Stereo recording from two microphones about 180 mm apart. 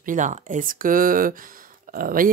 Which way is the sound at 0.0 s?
45° right (ahead or behind).